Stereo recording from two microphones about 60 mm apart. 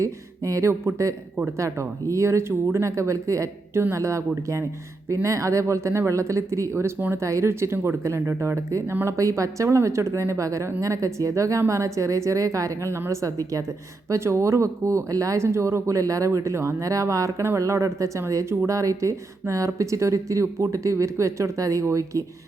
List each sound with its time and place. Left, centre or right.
0.0 s speech: right
12.9 s speech: right
13.2 s a woman's voice: right
14.1 s speech: right
15.4 s speech: right